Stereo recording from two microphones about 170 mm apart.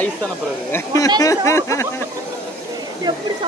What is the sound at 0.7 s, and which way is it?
Speech, 20° left (ahead or behind).